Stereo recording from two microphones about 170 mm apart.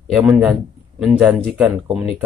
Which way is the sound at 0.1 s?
5° right (ahead or behind).